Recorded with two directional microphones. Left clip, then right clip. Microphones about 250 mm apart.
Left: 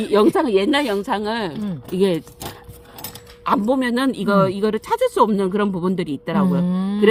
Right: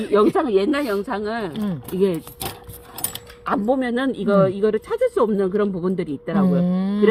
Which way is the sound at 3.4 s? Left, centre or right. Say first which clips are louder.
Left 2 dB; left.